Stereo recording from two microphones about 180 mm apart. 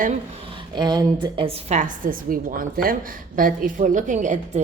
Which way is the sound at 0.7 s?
25° right (ahead or behind).